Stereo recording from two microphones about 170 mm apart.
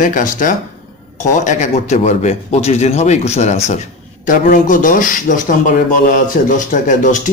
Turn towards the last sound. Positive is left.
turn(degrees=50)  # may be behind; listen again after turning